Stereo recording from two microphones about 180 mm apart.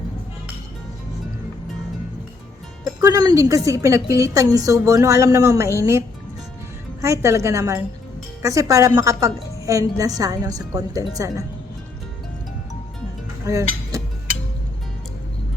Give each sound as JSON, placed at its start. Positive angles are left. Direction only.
{"t": 3.0, "sound": "a woman's voice", "side_deg": -20}
{"t": 7.0, "sound": "a woman's voice", "side_deg": -15}
{"t": 13.4, "sound": "music", "side_deg": -15}